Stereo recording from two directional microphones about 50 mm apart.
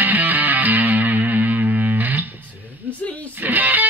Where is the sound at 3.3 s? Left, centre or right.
Right.